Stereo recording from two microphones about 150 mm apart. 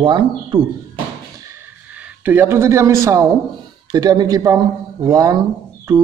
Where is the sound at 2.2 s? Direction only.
15° right (ahead or behind).